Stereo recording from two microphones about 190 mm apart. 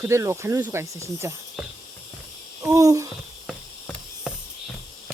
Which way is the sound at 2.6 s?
15° right (ahead or behind).